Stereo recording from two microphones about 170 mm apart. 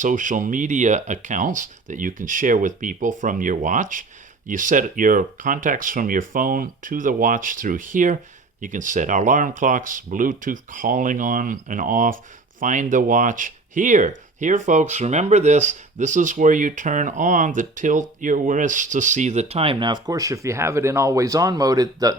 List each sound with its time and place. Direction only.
0.0 s speech: 50° right (ahead or behind); by 22.2 s 20° right (ahead or behind)